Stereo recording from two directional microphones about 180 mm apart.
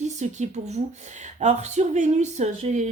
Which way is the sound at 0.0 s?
40° right (ahead or behind).